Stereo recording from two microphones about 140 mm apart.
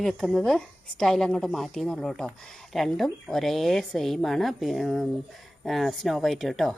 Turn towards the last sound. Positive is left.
turn(degrees=0)  # may be behind; listen again after turning